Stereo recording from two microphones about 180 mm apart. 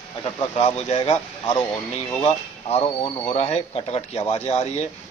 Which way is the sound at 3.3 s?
35° left (ahead or behind).